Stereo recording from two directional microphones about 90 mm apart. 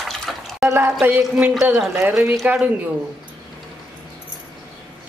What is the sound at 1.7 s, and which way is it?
Speech, 5° right (ahead or behind).